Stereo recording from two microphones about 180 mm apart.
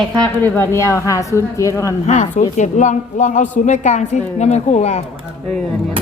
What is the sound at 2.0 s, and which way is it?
A woman's voice, 40° left (ahead or behind).